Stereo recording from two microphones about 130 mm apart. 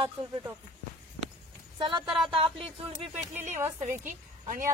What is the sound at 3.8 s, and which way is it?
Speech, 80° right.